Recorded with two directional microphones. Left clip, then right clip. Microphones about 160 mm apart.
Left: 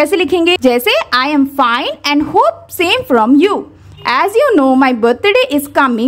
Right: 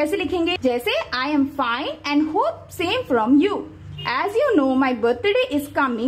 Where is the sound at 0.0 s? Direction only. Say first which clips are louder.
Left 10 dB; 40° left (ahead or behind).